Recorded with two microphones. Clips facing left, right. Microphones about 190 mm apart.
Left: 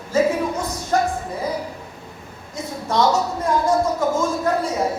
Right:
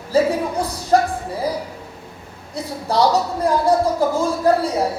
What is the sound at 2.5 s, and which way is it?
A woman's voice, 35° right (ahead or behind).